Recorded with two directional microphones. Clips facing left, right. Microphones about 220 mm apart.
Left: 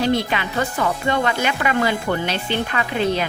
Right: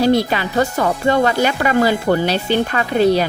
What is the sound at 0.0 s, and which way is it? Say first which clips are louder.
Speech: right 5 dB; 40° right (ahead or behind).